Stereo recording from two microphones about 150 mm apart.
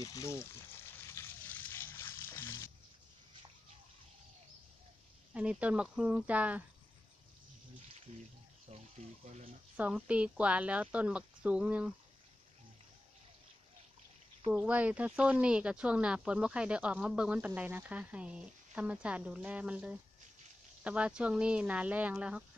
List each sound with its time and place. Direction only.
0.0 s speech: 20° left (ahead or behind)
1.0 s a sound: 15° left (ahead or behind)
5.3 s speech: 10° right (ahead or behind)
8.6 s speech: 45° right (ahead or behind)
9.8 s speech: 10° right (ahead or behind)
14.5 s speech: 10° right (ahead or behind)